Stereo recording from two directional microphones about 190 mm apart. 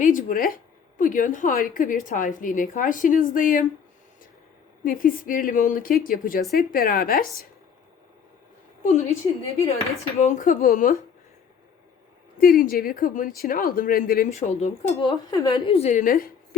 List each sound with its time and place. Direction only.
0.0 s a woman's voice: 45° left (ahead or behind)
4.8 s a woman's voice: 45° left (ahead or behind)
8.8 s a woman's voice: 35° left (ahead or behind)
10.2 s a woman's voice: 40° left (ahead or behind)
12.4 s a woman's voice: 50° left (ahead or behind)
14.3 s a woman's voice: 35° left (ahead or behind)
15.0 s a woman's voice: 20° left (ahead or behind); by 16.3 s 50° left (ahead or behind)